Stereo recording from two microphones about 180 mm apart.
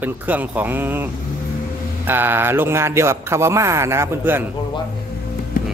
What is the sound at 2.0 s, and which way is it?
Speech, 10° right (ahead or behind).